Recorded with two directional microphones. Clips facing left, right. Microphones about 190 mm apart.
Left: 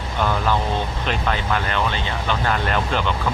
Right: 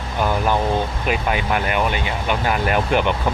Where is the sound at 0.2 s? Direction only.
15° right (ahead or behind).